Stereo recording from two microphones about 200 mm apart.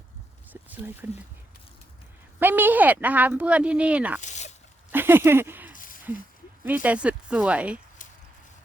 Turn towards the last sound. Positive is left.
turn(degrees=-5)  # may be behind; listen again after turning